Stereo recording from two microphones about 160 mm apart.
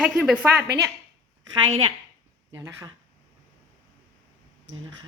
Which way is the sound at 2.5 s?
20° right (ahead or behind).